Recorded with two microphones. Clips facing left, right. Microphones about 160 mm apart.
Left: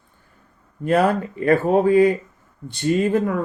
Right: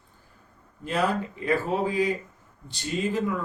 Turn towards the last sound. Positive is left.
turn(degrees=55)  # may be behind; listen again after turning